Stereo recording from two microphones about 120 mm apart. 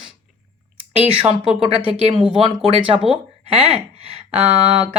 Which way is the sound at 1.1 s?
50° right (ahead or behind).